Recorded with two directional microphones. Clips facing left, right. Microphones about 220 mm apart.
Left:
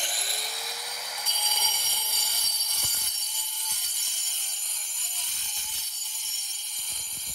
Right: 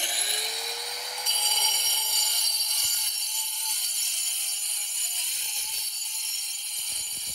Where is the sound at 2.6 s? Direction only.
50° left (ahead or behind).